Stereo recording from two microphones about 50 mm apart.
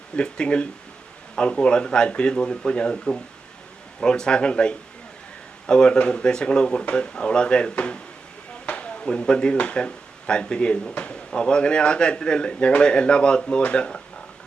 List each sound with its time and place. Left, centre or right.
0.2 s speech: centre